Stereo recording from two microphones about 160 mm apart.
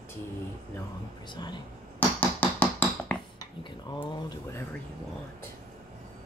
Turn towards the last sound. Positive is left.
turn(degrees=25)  # may be behind; listen again after turning